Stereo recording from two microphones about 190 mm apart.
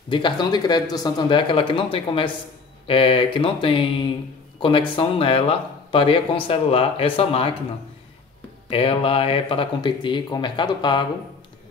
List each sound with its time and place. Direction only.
0.1 s speech: 25° left (ahead or behind)
8.6 s speech: 30° left (ahead or behind)